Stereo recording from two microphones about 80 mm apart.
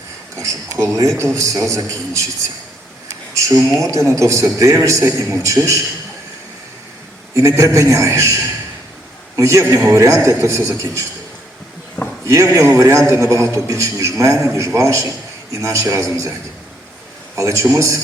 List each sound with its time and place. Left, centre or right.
0.3 s a man's voice: right
3.8 s a man's voice: right
7.3 s a man's voice: right
12.0 s a sound: left
12.3 s a man's voice: right
17.3 s a man's voice: right